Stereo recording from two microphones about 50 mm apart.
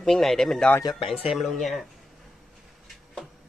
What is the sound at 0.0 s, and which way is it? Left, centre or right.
Speech, centre.